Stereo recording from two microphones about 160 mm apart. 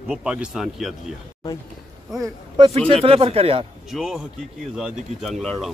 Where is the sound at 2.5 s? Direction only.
40° right (ahead or behind).